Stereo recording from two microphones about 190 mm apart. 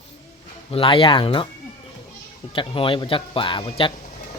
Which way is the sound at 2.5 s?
25° left (ahead or behind).